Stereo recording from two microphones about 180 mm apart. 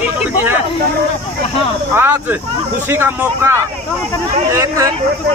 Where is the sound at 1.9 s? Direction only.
10° right (ahead or behind).